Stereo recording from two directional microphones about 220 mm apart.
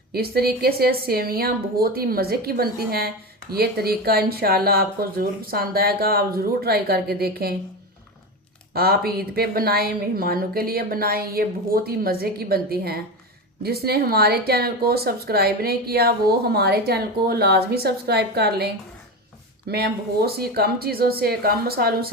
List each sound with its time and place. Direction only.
0.1 s speech: 45° right (ahead or behind)
8.7 s speech: 45° right (ahead or behind)